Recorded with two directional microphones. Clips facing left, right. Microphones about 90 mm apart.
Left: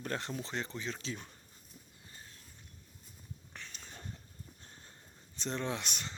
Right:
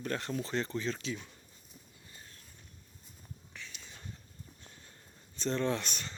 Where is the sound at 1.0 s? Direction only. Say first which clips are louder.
Right 3 dB; 40° left (ahead or behind).